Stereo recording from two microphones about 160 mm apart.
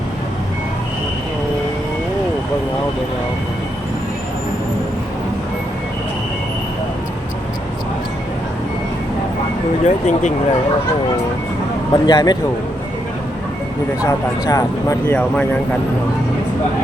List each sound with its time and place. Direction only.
9.8 s speech: 50° left (ahead or behind)
11.9 s speech: 25° left (ahead or behind)
14.0 s speech: 20° left (ahead or behind)